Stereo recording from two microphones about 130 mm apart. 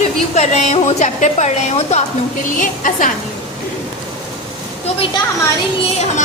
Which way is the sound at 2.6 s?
90° left.